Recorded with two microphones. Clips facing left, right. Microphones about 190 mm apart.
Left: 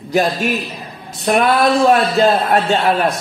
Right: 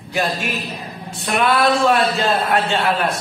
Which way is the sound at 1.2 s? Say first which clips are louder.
Left 3 dB; 40° left (ahead or behind).